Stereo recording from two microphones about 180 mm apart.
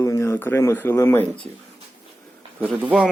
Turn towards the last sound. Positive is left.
turn(degrees=-10)  # may be behind; listen again after turning